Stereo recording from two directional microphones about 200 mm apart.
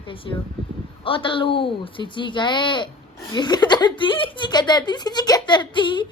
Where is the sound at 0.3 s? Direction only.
20° left (ahead or behind).